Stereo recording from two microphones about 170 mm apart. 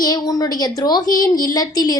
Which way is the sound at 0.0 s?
20° left (ahead or behind).